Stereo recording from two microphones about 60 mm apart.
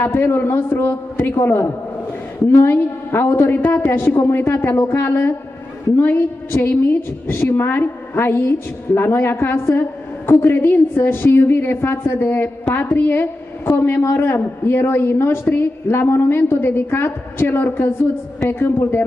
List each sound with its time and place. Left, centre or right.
0.0 s a woman's voice: left
3.8 s a woman's voice: left